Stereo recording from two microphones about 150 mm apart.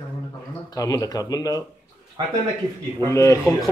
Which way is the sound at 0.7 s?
25° left (ahead or behind).